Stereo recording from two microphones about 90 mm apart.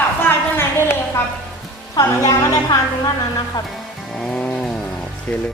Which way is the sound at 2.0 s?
40° left (ahead or behind).